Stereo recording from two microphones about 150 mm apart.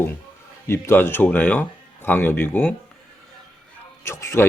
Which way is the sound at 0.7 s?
15° left (ahead or behind).